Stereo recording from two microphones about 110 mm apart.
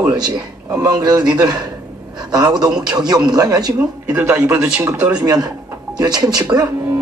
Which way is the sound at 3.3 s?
35° right (ahead or behind).